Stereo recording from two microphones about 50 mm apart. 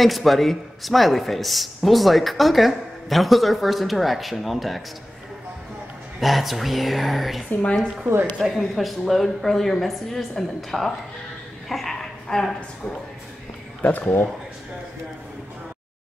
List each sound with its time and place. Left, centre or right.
0.0 s speech: centre
6.1 s speech: centre
12.3 s a woman's voice: centre
13.8 s speech: left